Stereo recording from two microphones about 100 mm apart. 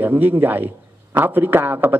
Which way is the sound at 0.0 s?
20° right (ahead or behind).